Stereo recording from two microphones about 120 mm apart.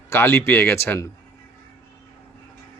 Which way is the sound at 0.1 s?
20° left (ahead or behind).